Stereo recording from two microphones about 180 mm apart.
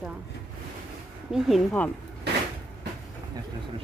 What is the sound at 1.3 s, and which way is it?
Speech, centre (ahead or behind).